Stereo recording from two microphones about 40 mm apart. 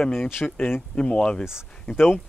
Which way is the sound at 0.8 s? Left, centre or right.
Left.